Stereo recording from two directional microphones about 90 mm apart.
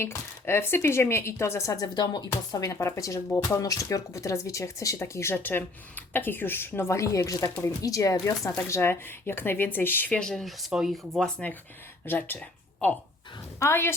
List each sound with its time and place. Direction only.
0.0 s a woman's voice: 25° left (ahead or behind)
2.0 s speech: 50° left (ahead or behind)
2.6 s speech: 30° left (ahead or behind)
3.2 s a woman's voice: 20° left (ahead or behind)
3.6 s a woman's voice: 40° left (ahead or behind)
8.7 s a woman's voice: 25° left (ahead or behind)
10.1 s speech: 5° left (ahead or behind)
12.0 s a woman's voice: 20° left (ahead or behind)